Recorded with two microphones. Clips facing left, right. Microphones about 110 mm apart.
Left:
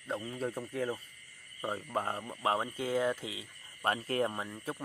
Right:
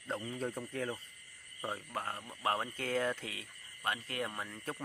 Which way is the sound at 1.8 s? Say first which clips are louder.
Left 6 dB; 25° left (ahead or behind).